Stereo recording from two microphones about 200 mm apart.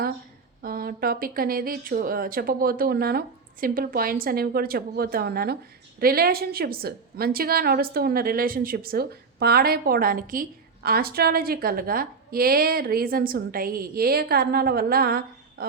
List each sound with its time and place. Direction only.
0.6 s speech: 45° right (ahead or behind)